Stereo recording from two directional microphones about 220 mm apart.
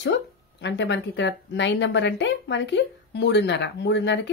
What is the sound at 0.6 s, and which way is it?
Speech, 55° left (ahead or behind).